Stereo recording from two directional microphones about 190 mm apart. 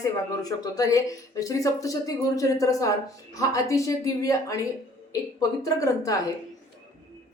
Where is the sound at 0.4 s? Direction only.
20° left (ahead or behind).